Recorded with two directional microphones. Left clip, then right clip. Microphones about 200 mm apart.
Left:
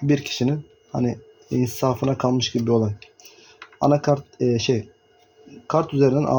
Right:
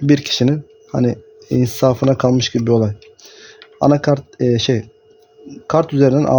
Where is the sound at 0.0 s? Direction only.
55° right (ahead or behind).